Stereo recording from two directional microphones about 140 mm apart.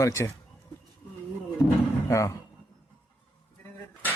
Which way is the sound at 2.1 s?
20° left (ahead or behind).